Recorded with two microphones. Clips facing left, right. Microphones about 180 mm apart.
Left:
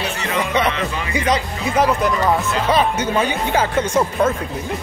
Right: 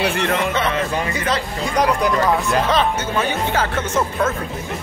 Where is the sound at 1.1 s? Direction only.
15° left (ahead or behind).